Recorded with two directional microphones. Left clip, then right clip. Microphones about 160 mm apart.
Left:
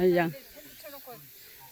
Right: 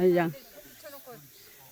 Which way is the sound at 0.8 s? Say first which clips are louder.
Left 1 dB; 90° right.